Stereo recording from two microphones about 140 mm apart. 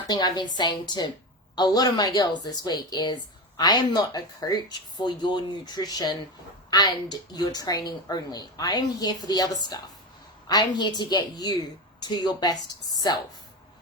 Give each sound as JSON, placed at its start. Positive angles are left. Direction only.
{"t": 0.1, "sound": "a woman's voice", "side_deg": 30}